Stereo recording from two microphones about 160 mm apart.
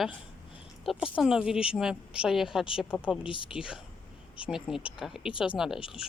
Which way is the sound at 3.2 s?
30° left (ahead or behind).